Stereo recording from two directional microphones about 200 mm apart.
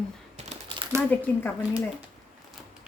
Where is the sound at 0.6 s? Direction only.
25° right (ahead or behind).